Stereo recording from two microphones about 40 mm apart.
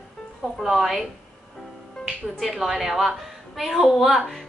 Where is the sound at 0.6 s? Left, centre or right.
Centre.